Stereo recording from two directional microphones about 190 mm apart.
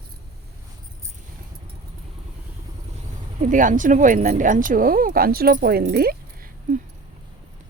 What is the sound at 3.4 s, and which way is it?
Speech, 45° right (ahead or behind).